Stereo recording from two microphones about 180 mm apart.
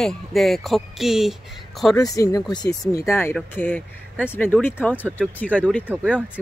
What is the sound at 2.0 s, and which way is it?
Speech, 20° left (ahead or behind).